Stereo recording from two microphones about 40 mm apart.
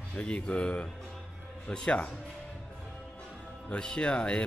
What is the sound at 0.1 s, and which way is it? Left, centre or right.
Speech, left.